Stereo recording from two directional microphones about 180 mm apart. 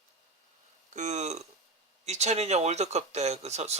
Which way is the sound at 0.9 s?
40° right (ahead or behind).